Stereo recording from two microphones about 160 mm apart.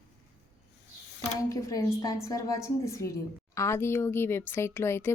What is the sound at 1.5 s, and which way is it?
A woman's voice, 20° left (ahead or behind).